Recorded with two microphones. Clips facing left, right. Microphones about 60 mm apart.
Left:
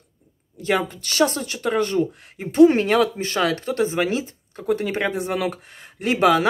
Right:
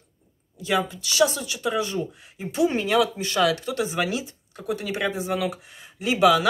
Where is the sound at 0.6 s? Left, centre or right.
Left.